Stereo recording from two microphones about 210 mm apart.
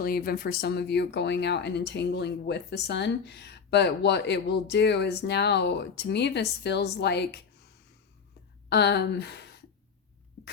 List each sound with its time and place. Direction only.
0.0 s speech: 45° left (ahead or behind)
8.7 s speech: 55° left (ahead or behind)